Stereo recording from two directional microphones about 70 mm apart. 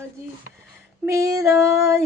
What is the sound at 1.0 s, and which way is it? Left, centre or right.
Female singing, right.